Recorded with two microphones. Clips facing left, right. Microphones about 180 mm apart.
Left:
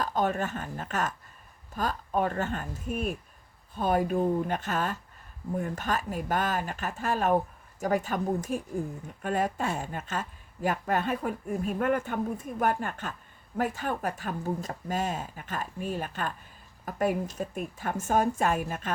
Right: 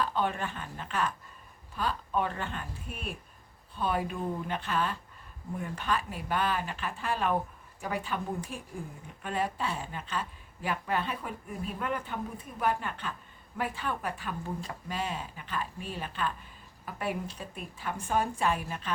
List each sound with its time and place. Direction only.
0.0 s a woman's voice: 40° left (ahead or behind)